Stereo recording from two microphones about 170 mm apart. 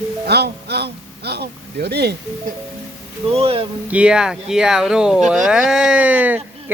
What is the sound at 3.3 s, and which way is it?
Speech, 35° right (ahead or behind).